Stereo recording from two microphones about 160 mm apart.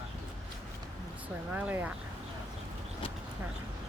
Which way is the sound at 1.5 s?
10° right (ahead or behind).